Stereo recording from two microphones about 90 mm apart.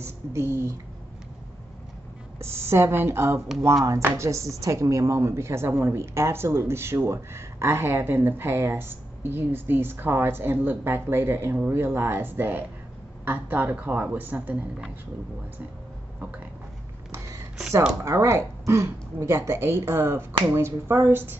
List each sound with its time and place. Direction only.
0.0 s speech: 30° right (ahead or behind)
2.3 s speech: 30° right (ahead or behind)
17.1 s a sound: 35° right (ahead or behind)
18.0 s speech: 30° right (ahead or behind)